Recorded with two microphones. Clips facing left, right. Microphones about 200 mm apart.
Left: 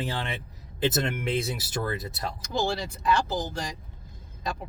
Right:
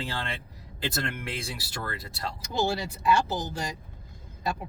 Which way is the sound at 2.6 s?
5° right (ahead or behind).